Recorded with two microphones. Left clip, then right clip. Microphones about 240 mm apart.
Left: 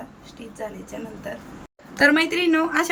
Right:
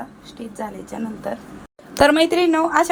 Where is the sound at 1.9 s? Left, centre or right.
Centre.